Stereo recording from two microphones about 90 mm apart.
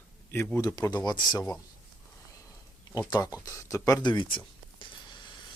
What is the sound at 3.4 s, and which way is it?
Speech, 40° left (ahead or behind).